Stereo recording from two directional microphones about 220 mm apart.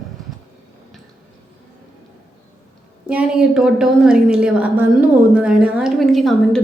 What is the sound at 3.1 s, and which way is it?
A woman's voice, 5° right (ahead or behind).